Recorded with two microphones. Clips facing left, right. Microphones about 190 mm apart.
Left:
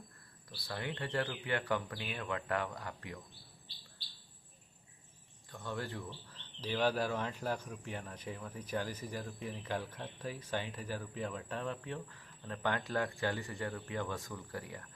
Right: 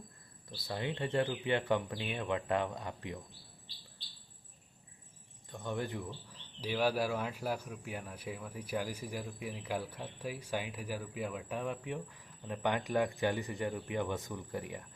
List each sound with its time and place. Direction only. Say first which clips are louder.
0.5 s speech: right 3 dB; 20° right (ahead or behind)
5.5 s speech: right 3 dB; 20° right (ahead or behind)